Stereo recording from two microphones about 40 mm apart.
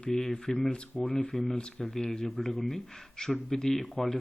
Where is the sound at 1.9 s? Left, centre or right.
Centre.